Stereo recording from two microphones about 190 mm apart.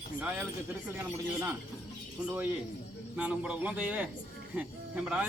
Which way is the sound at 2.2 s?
10° right (ahead or behind).